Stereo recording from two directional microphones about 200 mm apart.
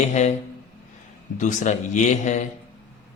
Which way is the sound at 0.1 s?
35° left (ahead or behind).